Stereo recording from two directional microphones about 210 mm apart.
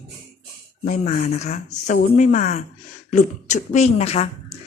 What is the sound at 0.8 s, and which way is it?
Speech, 40° left (ahead or behind).